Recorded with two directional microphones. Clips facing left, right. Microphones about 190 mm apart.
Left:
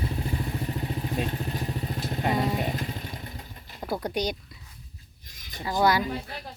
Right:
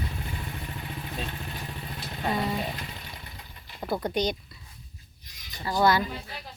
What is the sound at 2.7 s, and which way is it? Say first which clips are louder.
Vehicle: left 6 dB; 45° left (ahead or behind).